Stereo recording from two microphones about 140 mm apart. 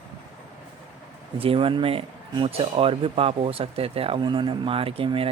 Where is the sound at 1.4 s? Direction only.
40° right (ahead or behind).